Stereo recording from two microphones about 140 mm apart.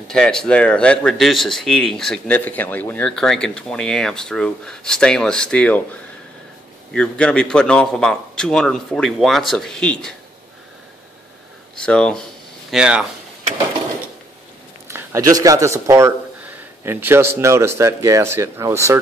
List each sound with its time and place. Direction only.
0.1 s speech: 5° left (ahead or behind)
6.9 s speech: 5° left (ahead or behind)
11.8 s speech: 5° left (ahead or behind)
12.7 s speech: 5° right (ahead or behind)
14.9 s speech: 20° right (ahead or behind)